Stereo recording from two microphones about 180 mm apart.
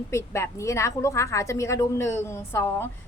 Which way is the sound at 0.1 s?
15° left (ahead or behind).